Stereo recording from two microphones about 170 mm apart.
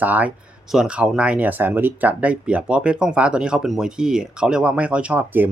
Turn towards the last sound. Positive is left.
turn(degrees=-10)  # may be behind; listen again after turning